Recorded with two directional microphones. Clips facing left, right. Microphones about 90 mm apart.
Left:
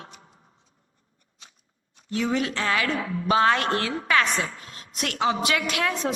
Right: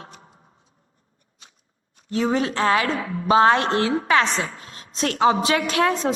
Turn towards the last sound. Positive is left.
turn(degrees=-35)  # may be behind; listen again after turning